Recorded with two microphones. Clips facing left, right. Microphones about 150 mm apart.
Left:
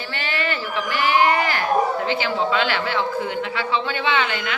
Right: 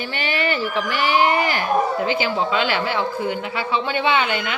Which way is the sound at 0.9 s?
15° right (ahead or behind).